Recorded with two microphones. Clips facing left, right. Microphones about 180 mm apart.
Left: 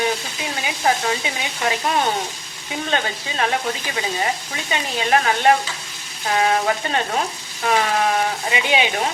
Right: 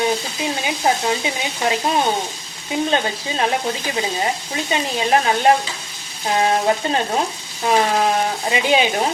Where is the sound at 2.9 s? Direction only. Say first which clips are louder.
Right 3 dB; 25° right (ahead or behind).